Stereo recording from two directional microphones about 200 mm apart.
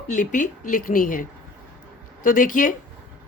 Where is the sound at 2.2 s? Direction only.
40° left (ahead or behind).